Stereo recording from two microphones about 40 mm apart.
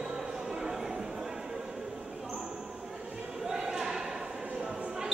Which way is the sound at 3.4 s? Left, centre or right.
Centre.